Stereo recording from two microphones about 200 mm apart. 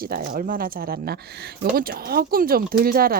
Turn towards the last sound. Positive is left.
turn(degrees=-45)  # may be behind; listen again after turning